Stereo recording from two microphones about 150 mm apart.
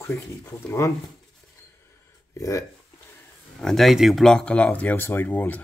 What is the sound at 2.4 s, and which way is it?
Speech, 20° left (ahead or behind).